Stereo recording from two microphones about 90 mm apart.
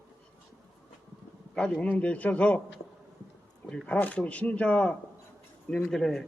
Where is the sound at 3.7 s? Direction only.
10° left (ahead or behind).